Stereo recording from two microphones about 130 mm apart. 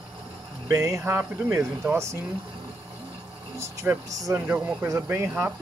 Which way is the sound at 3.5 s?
25° right (ahead or behind).